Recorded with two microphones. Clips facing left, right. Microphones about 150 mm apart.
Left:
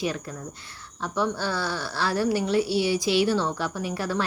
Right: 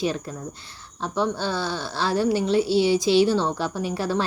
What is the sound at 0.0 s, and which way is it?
A woman's voice, 30° right (ahead or behind).